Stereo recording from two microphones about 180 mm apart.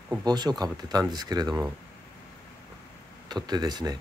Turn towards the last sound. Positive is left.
turn(degrees=-20)  # may be behind; listen again after turning